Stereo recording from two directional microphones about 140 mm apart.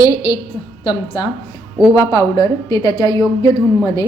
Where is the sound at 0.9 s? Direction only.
30° left (ahead or behind).